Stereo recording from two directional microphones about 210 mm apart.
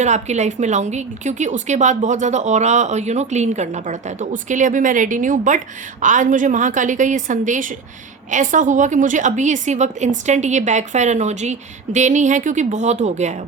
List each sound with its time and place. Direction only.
0.0 s a woman's voice: 35° right (ahead or behind)